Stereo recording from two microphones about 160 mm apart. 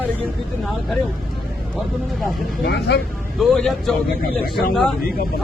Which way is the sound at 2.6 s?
90° left.